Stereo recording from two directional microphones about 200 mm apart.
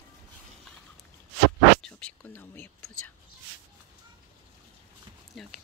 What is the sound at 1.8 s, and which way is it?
Speech, 10° left (ahead or behind).